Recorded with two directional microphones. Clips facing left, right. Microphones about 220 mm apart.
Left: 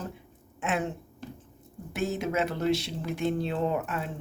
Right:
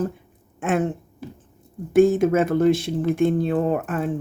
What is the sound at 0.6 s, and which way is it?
Speech, 50° right (ahead or behind).